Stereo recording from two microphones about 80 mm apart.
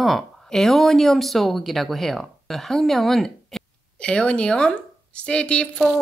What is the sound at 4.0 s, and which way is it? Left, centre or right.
A woman's voice, centre.